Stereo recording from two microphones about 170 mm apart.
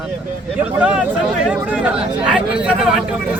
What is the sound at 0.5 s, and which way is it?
Speech, 10° right (ahead or behind).